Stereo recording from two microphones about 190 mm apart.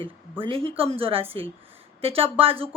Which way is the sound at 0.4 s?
30° right (ahead or behind).